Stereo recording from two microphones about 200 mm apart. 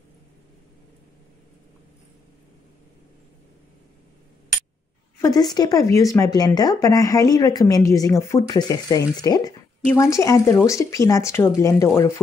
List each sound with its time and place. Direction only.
5.2 s speech: 20° left (ahead or behind)